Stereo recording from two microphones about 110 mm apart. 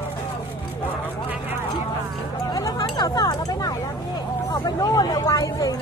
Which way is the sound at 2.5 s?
30° left (ahead or behind).